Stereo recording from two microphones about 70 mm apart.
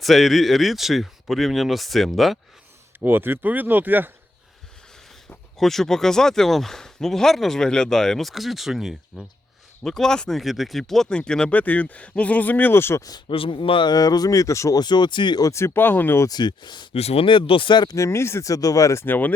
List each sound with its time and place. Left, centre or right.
0.0 s speech: centre
3.0 s speech: right
5.5 s speech: centre
9.8 s speech: centre; by 13.0 s left
13.0 s speech: left
14.8 s speech: left
15.4 s speech: left
16.3 s speech: left
17.9 s speech: left
18.5 s speech: left
19.0 s speech: left